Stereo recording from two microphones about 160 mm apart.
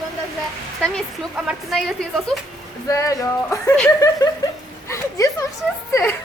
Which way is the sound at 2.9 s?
20° left (ahead or behind).